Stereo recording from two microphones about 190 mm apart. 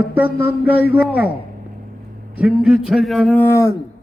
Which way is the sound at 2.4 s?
5° right (ahead or behind).